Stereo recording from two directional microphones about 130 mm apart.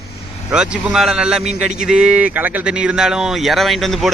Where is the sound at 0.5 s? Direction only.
5° right (ahead or behind).